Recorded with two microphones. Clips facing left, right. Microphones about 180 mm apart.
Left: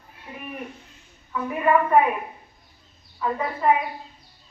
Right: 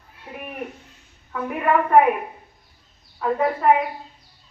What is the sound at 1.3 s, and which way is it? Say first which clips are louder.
Speech: even; 65° right (ahead or behind).